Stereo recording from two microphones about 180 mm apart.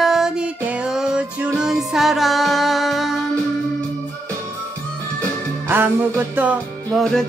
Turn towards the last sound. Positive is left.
turn(degrees=-10)  # may be behind; listen again after turning